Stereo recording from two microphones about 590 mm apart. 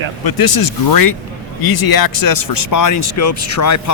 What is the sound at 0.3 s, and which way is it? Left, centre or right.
Speech, left.